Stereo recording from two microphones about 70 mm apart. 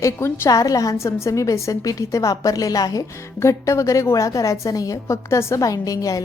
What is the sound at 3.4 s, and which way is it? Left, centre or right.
A woman's voice, left.